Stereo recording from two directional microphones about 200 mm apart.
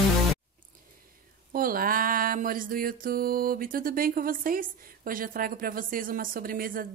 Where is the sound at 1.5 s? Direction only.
45° right (ahead or behind).